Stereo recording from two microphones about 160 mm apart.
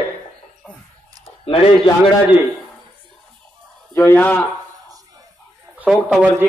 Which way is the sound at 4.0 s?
10° left (ahead or behind).